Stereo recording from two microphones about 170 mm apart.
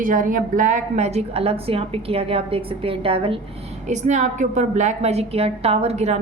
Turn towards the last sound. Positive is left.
turn(degrees=-40)  # may be behind; listen again after turning